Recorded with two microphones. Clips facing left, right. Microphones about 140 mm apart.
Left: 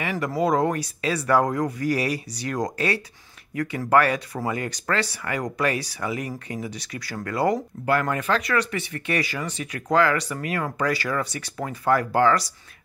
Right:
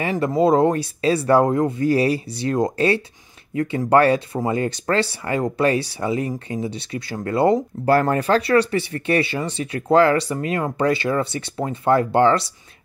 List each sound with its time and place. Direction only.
0.0 s speech: 25° right (ahead or behind)